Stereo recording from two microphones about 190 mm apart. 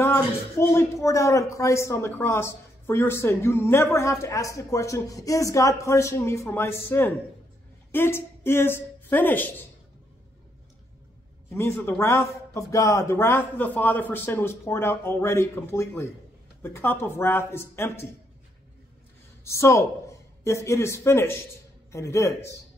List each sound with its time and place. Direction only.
0.0 s speech: 15° left (ahead or behind)
11.5 s speech: 10° left (ahead or behind)
19.4 s speech: 15° left (ahead or behind)